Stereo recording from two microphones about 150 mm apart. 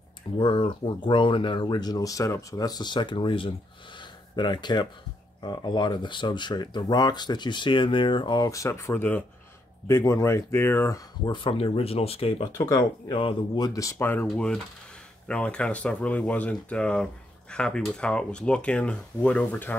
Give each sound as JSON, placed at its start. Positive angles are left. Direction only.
{"t": 0.4, "sound": "speech", "side_deg": 30}
{"t": 11.2, "sound": "speech", "side_deg": 35}
{"t": 12.5, "sound": "speech", "side_deg": 25}
{"t": 13.7, "sound": "speech", "side_deg": 20}